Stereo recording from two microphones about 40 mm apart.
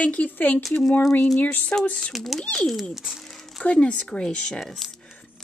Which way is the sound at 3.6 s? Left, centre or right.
Left.